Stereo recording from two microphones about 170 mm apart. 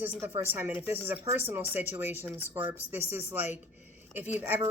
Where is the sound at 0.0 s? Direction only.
15° right (ahead or behind).